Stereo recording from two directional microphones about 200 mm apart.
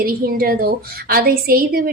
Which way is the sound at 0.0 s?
50° right (ahead or behind).